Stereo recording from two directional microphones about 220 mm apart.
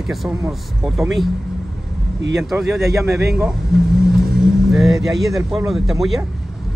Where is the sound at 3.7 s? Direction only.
45° right (ahead or behind).